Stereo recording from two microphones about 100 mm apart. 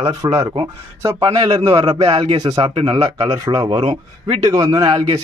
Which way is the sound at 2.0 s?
50° right (ahead or behind).